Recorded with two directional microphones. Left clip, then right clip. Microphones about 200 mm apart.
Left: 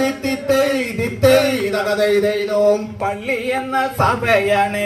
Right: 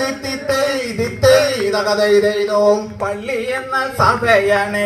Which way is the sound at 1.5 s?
20° left (ahead or behind).